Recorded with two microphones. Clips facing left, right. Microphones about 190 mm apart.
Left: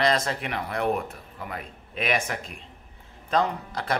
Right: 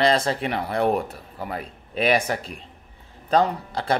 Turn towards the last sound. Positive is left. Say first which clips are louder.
# right 4 dB
turn(degrees=-30)  # may be behind; listen again after turning